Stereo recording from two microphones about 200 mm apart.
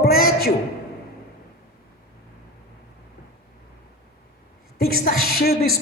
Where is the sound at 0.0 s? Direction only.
50° left (ahead or behind).